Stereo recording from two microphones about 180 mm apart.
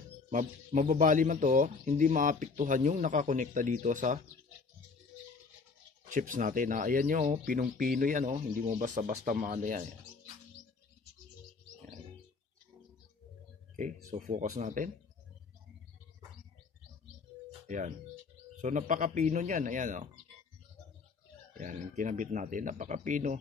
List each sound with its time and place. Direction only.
0.3 s a man's voice: 45° right (ahead or behind)
6.0 s a man's voice: 45° right (ahead or behind)
13.7 s a man's voice: 45° right (ahead or behind)
17.6 s a man's voice: 45° right (ahead or behind)
21.5 s a man's voice: 45° right (ahead or behind)